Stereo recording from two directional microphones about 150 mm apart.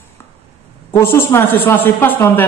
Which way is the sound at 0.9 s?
15° left (ahead or behind).